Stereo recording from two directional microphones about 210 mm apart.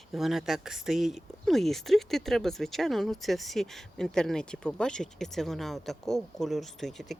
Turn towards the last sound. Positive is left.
turn(degrees=0)  # may be behind; listen again after turning